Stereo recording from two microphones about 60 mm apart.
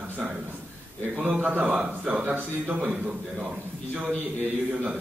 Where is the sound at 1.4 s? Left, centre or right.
Right.